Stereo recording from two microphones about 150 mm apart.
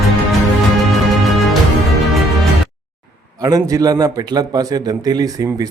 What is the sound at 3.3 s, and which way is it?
A man's voice, 25° right (ahead or behind).